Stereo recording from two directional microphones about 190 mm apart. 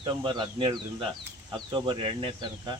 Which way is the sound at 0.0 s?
25° right (ahead or behind).